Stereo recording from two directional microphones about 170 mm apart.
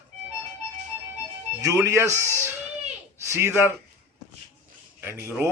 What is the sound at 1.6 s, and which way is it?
Speech, 15° right (ahead or behind).